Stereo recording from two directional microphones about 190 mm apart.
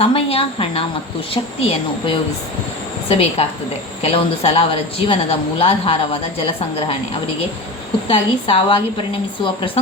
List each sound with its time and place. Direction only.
0.0 s a woman's voice: 30° left (ahead or behind)